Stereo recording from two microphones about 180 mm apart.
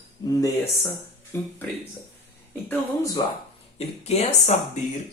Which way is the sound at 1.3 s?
15° left (ahead or behind).